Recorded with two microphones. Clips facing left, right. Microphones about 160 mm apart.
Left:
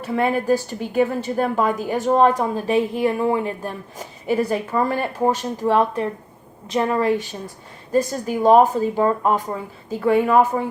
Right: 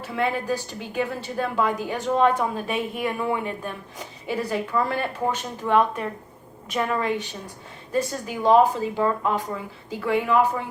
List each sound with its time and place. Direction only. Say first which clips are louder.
0.1 s a woman's voice: left 6 dB; 40° left (ahead or behind)